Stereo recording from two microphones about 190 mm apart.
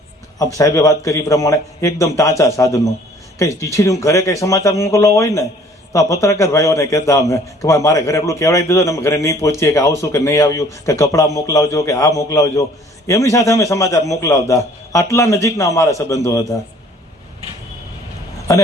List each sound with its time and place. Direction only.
0.3 s a man's voice: 20° left (ahead or behind)